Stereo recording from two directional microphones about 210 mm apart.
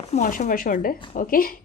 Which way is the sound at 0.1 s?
35° left (ahead or behind).